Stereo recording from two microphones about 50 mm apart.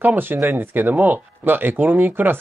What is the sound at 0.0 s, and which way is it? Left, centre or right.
Speech, right.